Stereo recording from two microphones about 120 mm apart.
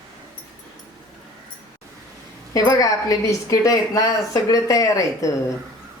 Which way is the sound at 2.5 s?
30° left (ahead or behind).